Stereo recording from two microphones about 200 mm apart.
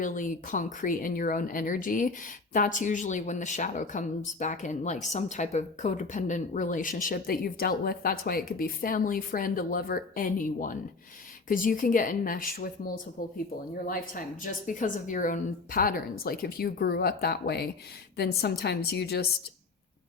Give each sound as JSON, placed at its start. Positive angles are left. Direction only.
{"t": 0.0, "sound": "a woman's voice", "side_deg": 40}
{"t": 13.8, "sound": "a woman's voice", "side_deg": 45}